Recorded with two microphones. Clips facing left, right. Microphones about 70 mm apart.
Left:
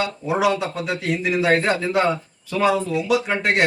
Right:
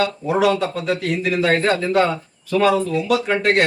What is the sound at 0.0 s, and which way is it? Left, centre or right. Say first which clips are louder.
Speech: right 3 dB; centre.